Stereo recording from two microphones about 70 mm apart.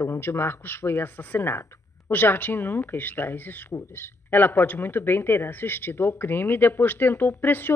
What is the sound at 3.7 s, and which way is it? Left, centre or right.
Speech, left.